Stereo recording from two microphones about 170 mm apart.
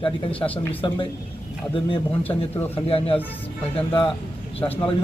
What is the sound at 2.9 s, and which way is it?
A man's voice, 35° left (ahead or behind).